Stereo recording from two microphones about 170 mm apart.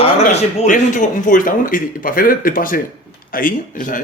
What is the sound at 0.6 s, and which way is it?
Speech, 50° left (ahead or behind).